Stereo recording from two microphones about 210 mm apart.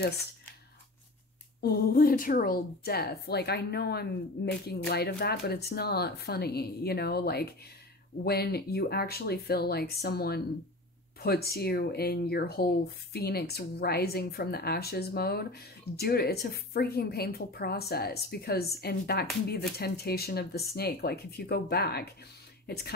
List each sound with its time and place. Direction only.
1.6 s speech: 45° left (ahead or behind)